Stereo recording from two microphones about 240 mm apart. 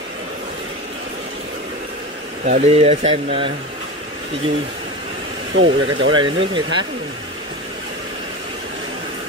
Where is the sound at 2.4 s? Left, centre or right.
Right.